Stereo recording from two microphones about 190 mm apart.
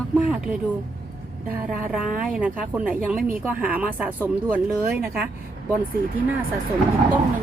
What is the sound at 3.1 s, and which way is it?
Speech, 45° right (ahead or behind).